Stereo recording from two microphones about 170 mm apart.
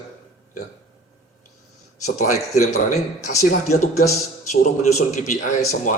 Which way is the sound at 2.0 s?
45° left (ahead or behind).